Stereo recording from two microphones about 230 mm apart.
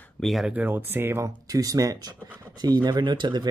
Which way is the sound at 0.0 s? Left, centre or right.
Centre.